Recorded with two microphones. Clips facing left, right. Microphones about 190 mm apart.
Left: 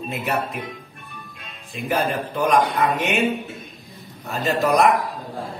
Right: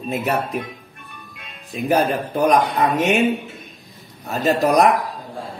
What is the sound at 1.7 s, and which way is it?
Speech, 40° right (ahead or behind).